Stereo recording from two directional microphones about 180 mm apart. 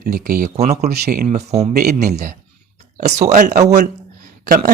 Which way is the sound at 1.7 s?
55° right (ahead or behind).